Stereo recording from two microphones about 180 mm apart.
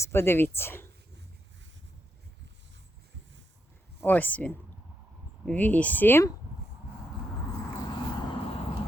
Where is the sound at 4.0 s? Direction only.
10° left (ahead or behind).